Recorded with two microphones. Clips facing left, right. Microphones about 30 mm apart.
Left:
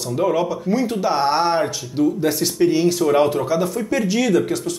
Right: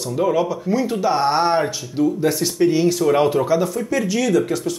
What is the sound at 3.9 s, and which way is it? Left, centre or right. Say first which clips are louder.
Speech: left 1 dB; centre.